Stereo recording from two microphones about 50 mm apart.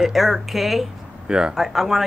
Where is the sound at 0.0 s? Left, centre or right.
Centre.